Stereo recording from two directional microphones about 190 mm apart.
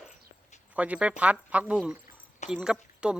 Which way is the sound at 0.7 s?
5° right (ahead or behind).